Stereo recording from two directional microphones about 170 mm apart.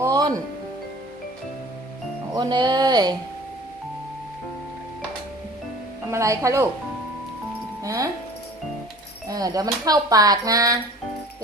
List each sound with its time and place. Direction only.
0.0 s music: 20° right (ahead or behind)
2.3 s speech: 25° right (ahead or behind)
6.1 s a woman's voice: 20° right (ahead or behind)
7.9 s speech: 20° right (ahead or behind)
9.3 s speech: 20° right (ahead or behind)